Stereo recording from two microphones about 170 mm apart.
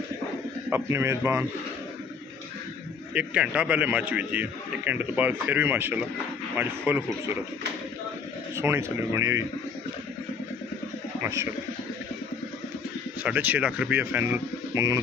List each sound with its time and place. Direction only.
0.7 s a man's voice: 15° right (ahead or behind)
3.2 s a man's voice: 5° right (ahead or behind)
8.5 s a man's voice: 15° right (ahead or behind)
13.2 s a man's voice: 10° right (ahead or behind)